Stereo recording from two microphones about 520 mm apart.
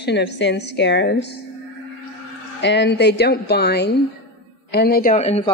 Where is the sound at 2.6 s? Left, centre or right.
Centre.